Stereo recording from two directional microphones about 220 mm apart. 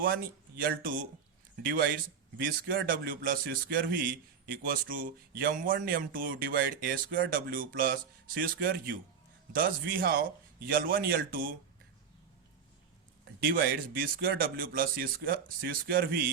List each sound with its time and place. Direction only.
0.0 s speech: 40° right (ahead or behind)
2.6 s speech: 40° right (ahead or behind)
13.4 s speech: 45° right (ahead or behind)